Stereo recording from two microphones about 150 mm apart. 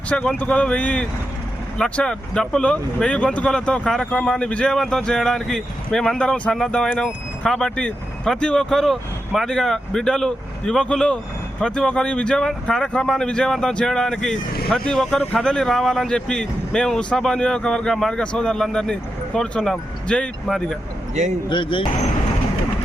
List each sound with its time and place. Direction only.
0.1 s speech: 10° left (ahead or behind)
21.5 s speech: 35° left (ahead or behind)